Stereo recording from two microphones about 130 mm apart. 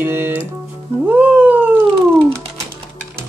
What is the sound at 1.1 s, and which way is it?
Cat, 15° right (ahead or behind).